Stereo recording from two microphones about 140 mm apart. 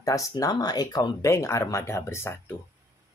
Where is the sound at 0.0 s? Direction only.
25° left (ahead or behind).